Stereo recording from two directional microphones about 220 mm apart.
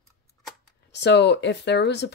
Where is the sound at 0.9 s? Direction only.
50° left (ahead or behind).